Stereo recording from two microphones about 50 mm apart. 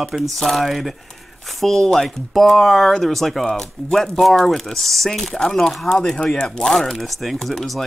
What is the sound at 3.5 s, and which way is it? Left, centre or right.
Speech, centre.